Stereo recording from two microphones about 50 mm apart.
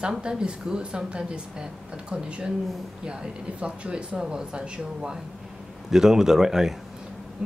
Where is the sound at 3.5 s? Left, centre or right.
Right; by 6.7 s centre.